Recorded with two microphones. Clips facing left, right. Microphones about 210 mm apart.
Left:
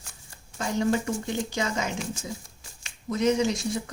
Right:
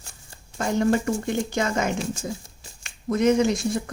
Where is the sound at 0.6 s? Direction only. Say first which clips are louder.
Right 4 dB; 55° right (ahead or behind).